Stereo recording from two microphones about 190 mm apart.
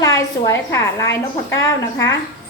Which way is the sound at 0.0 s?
20° left (ahead or behind).